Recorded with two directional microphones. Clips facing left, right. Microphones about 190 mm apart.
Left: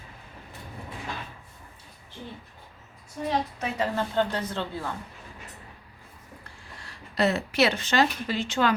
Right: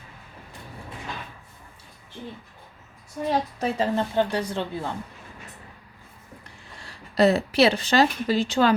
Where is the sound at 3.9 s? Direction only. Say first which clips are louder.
Right 3 dB; 15° right (ahead or behind).